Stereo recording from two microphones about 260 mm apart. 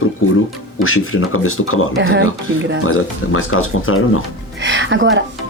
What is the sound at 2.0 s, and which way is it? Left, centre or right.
Speech, right.